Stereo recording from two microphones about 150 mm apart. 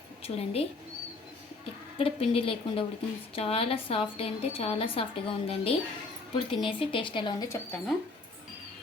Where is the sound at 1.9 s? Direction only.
40° left (ahead or behind).